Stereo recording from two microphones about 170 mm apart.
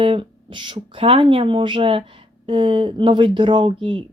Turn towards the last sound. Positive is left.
turn(degrees=-30)  # may be behind; listen again after turning